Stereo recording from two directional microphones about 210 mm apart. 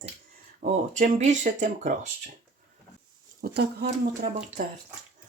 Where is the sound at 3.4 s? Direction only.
50° right (ahead or behind).